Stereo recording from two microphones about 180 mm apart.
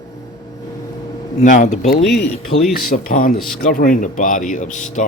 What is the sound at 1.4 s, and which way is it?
Speech, 40° left (ahead or behind).